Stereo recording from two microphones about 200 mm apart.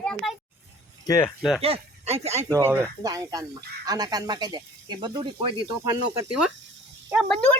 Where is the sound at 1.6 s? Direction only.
30° right (ahead or behind).